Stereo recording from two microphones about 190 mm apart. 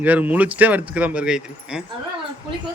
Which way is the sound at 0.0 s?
10° right (ahead or behind).